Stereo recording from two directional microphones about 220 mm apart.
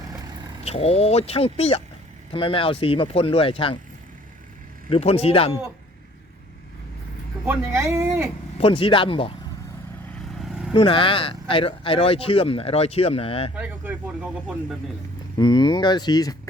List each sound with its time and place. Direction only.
0.6 s speech: 30° left (ahead or behind)
4.9 s speech: 25° left (ahead or behind)
7.4 s speech: 10° right (ahead or behind)
8.5 s speech: 25° left (ahead or behind)
10.2 s vehicle: centre (ahead or behind)
10.8 s speech: 25° left (ahead or behind)
13.6 s speech: 10° right (ahead or behind)
15.4 s speech: 20° left (ahead or behind)